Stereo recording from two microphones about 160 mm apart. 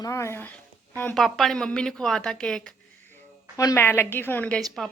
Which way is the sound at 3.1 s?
20° left (ahead or behind).